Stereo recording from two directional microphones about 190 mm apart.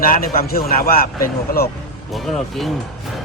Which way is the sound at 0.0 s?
50° left (ahead or behind).